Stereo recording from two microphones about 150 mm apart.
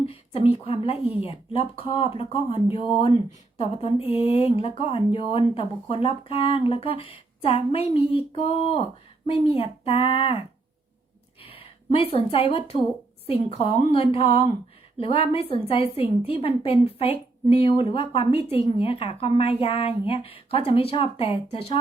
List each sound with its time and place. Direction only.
0.0 s speech: 40° left (ahead or behind)
11.4 s a sound: 40° left (ahead or behind)
12.1 s speech: 40° left (ahead or behind)